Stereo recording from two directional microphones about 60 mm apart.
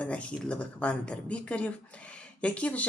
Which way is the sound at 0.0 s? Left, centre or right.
Left.